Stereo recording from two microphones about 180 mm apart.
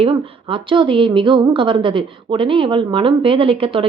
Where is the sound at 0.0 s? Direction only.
30° right (ahead or behind).